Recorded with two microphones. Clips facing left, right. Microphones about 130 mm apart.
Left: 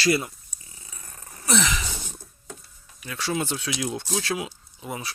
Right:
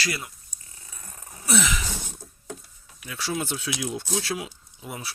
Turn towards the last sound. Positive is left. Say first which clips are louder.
# left 3 dB
turn(degrees=-5)  # may be behind; listen again after turning